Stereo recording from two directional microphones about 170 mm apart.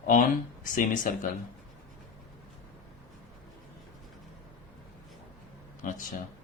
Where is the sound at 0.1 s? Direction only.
50° left (ahead or behind).